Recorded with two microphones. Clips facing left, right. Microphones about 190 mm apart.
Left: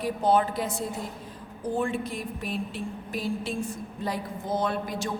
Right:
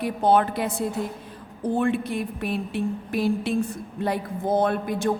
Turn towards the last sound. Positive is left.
turn(degrees=-55)  # may be behind; listen again after turning